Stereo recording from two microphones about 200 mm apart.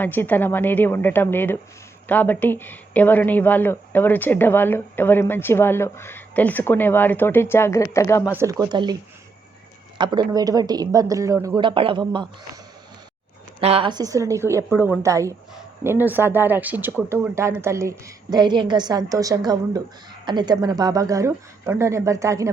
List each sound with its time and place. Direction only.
0.0 s speech: 10° left (ahead or behind)
8.4 s speech: 15° right (ahead or behind)
10.0 s speech: 20° right (ahead or behind)
13.6 s speech: 30° right (ahead or behind)